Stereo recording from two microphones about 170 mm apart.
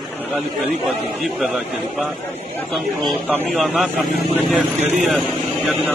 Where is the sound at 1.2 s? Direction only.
Centre (ahead or behind).